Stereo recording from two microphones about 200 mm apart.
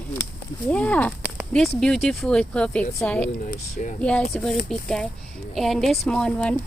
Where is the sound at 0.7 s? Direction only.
5° left (ahead or behind).